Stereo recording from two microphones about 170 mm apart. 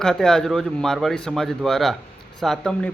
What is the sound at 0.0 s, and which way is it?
A man's voice, 5° left (ahead or behind).